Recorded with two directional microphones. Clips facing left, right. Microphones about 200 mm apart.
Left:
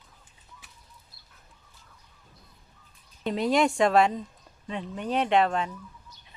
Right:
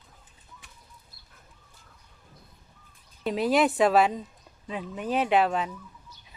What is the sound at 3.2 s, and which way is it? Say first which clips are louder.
Speech: right 1 dB; 5° right (ahead or behind).